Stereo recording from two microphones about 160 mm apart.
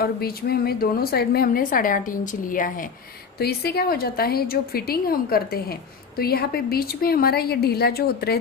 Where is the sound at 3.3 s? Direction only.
80° left.